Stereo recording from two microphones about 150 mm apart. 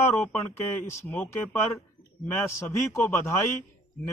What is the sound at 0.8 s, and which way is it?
Speech, 20° left (ahead or behind).